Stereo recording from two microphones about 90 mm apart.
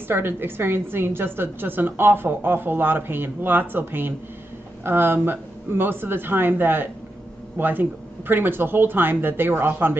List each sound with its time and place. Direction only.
0.1 s a woman's voice: 25° right (ahead or behind)